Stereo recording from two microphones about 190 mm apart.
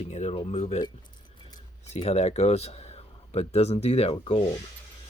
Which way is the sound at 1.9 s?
35° left (ahead or behind).